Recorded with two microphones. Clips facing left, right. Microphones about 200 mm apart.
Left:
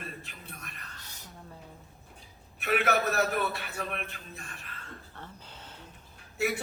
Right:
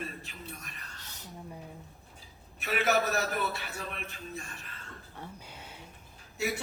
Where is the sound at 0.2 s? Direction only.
55° left (ahead or behind).